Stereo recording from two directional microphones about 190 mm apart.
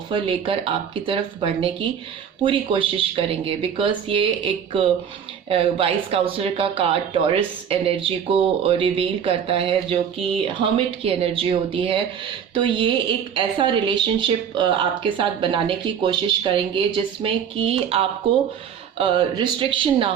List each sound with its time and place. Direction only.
0.1 s speech: 25° right (ahead or behind)